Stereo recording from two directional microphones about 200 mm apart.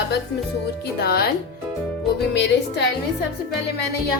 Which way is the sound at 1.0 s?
50° left (ahead or behind).